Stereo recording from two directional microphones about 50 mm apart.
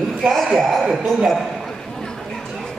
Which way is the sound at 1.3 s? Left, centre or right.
Centre.